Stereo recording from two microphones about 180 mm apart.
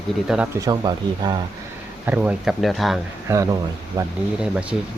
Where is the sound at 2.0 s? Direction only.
10° right (ahead or behind).